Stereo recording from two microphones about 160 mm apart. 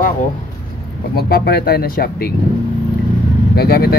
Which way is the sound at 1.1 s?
75° left (ahead or behind).